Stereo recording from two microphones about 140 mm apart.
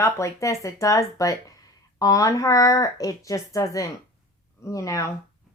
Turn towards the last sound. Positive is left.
turn(degrees=20)  # may be behind; listen again after turning